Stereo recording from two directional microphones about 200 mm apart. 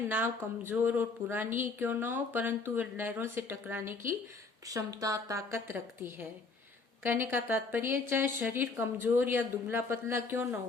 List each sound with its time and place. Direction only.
0.1 s speech: 10° right (ahead or behind)